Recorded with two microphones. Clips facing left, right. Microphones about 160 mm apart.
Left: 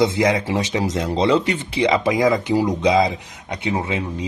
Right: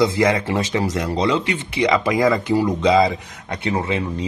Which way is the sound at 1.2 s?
40° left (ahead or behind).